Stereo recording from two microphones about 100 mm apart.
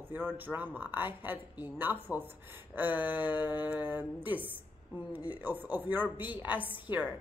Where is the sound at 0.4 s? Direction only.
20° right (ahead or behind).